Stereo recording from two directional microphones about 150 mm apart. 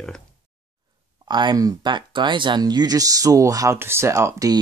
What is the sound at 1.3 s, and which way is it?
Speech, 30° right (ahead or behind).